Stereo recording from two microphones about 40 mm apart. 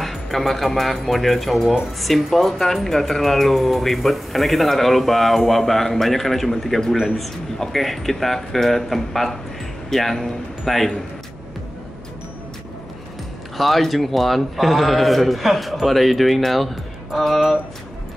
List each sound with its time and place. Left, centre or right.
0.0 s speech: centre
13.6 s speech: centre